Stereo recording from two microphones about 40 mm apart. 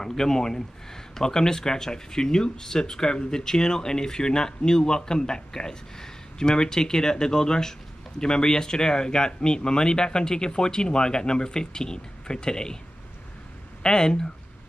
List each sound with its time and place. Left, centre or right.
0.0 s speech: centre
13.8 s speech: centre